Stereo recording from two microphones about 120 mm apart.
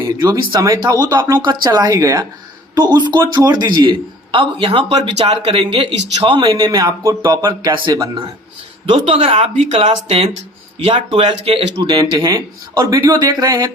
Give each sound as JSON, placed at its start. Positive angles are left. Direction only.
{"t": 0.0, "sound": "a man's voice", "side_deg": -25}
{"t": 5.3, "sound": "speech", "side_deg": -65}
{"t": 6.1, "sound": "a man's voice", "side_deg": -40}
{"t": 8.9, "sound": "speech", "side_deg": -50}
{"t": 10.8, "sound": "speech", "side_deg": -50}
{"t": 11.9, "sound": "a man's voice", "side_deg": -30}